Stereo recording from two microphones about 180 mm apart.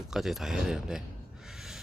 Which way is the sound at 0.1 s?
Centre (ahead or behind).